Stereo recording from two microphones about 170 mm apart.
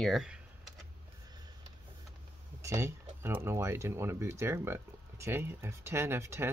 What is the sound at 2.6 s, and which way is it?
Speech, 15° right (ahead or behind).